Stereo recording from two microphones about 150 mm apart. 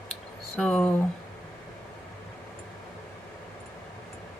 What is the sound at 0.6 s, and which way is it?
Speech, 5° left (ahead or behind).